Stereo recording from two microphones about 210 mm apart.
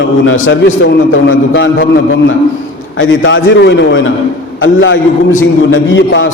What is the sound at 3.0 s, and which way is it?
A man's voice, 65° left (ahead or behind).